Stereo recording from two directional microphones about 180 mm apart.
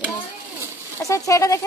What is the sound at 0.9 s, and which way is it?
Speech, 15° left (ahead or behind).